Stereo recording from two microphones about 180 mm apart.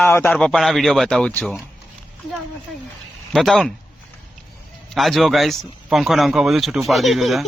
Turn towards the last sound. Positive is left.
turn(degrees=0)  # may be behind; listen again after turning